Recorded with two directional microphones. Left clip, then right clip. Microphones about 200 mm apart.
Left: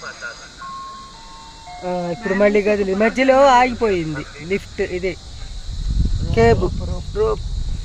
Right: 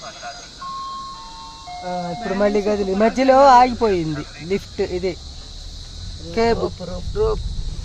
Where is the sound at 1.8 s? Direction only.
15° left (ahead or behind).